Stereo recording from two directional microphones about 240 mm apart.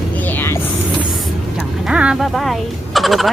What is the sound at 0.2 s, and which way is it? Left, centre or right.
Vehicle, centre.